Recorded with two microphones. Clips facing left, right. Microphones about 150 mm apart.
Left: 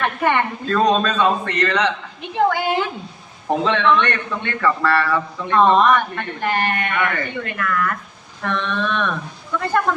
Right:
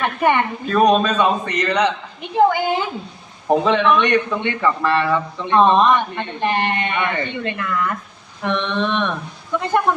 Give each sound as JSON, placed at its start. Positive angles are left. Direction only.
{"t": 0.0, "sound": "a man's voice", "side_deg": -15}